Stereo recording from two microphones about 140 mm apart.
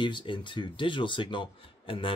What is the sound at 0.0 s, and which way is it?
Speech, 35° left (ahead or behind).